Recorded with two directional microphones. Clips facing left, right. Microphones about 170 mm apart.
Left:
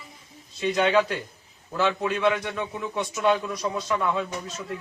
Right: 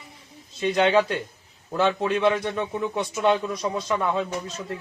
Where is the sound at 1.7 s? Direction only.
30° right (ahead or behind).